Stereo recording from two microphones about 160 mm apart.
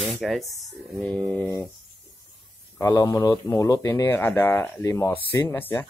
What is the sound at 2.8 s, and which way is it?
Speech, 20° left (ahead or behind).